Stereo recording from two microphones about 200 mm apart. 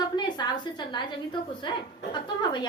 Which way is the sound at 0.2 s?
20° left (ahead or behind).